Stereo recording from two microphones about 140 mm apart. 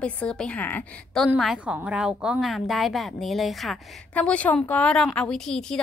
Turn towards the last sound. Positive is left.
turn(degrees=5)  # may be behind; listen again after turning